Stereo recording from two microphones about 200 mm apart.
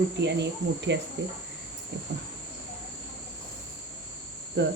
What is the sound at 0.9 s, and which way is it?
Cricket, 60° right (ahead or behind).